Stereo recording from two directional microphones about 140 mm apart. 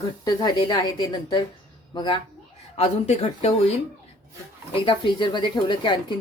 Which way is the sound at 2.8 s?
50° left (ahead or behind).